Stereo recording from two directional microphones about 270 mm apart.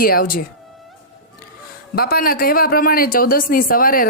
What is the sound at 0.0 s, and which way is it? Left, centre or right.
Speech, left.